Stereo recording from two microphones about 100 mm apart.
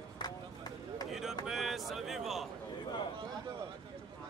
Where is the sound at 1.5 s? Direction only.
Centre (ahead or behind).